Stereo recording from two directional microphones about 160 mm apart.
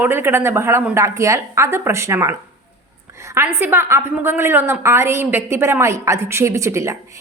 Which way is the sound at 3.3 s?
15° right (ahead or behind).